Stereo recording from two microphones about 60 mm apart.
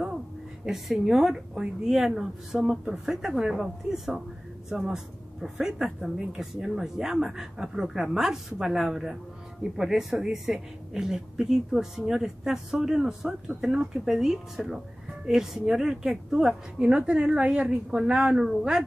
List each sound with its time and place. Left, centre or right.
0.7 s speech: centre
16.8 s speech: centre